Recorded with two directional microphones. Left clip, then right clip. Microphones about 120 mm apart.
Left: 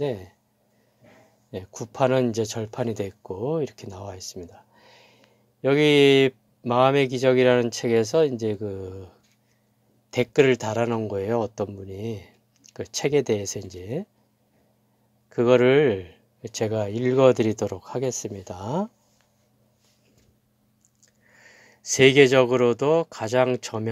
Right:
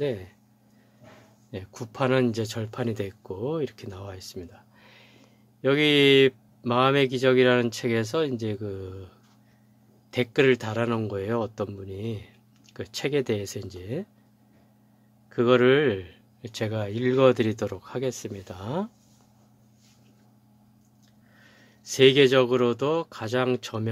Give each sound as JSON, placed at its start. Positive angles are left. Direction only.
{"t": 0.0, "sound": "speech", "side_deg": 25}
{"t": 1.5, "sound": "speech", "side_deg": 25}
{"t": 10.1, "sound": "speech", "side_deg": 25}
{"t": 15.2, "sound": "speech", "side_deg": 25}
{"t": 21.4, "sound": "speech", "side_deg": 40}